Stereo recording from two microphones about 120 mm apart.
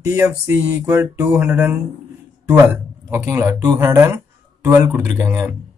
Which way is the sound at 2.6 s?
20° right (ahead or behind).